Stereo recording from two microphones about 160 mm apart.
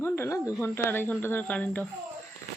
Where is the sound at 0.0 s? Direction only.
15° left (ahead or behind).